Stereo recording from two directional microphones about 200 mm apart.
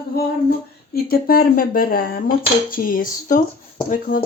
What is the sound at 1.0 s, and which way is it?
Speech, 50° left (ahead or behind).